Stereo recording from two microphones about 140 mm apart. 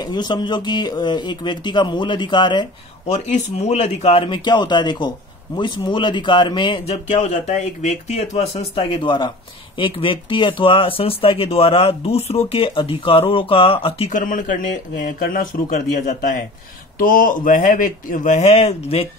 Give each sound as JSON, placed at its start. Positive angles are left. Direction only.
{"t": 0.0, "sound": "speech", "side_deg": 30}
{"t": 3.1, "sound": "speech", "side_deg": 55}
{"t": 7.1, "sound": "speech", "side_deg": 55}
{"t": 9.0, "sound": "speech", "side_deg": 30}
{"t": 14.1, "sound": "speech", "side_deg": 70}